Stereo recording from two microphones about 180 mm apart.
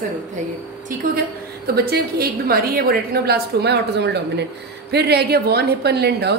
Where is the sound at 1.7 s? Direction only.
60° right (ahead or behind).